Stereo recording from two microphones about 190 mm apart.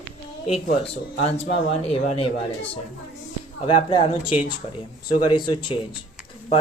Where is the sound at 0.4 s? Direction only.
30° left (ahead or behind).